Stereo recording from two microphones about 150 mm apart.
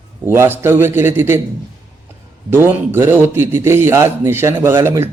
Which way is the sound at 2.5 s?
15° right (ahead or behind).